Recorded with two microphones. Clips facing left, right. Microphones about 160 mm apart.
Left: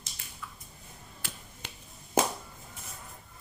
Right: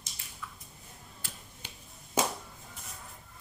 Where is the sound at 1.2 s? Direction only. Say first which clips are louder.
Left 4 dB; 80° left.